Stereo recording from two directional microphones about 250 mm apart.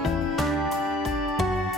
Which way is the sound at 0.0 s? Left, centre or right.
Centre.